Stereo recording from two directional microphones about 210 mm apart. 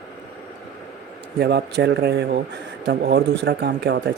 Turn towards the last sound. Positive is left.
turn(degrees=-55)  # may be behind; listen again after turning